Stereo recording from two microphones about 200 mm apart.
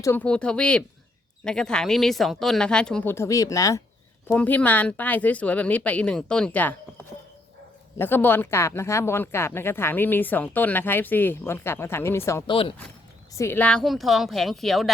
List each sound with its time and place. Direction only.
0.0 s speech: 10° left (ahead or behind)
7.9 s speech: 10° left (ahead or behind)
12.5 s speech: 25° left (ahead or behind)
13.3 s speech: 15° left (ahead or behind)